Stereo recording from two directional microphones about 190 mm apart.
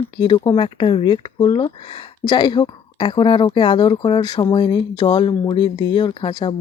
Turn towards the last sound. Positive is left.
turn(degrees=25)  # may be behind; listen again after turning